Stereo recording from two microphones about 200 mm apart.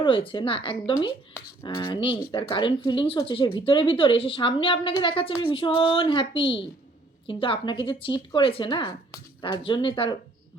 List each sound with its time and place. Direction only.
0.0 s speech: 25° left (ahead or behind)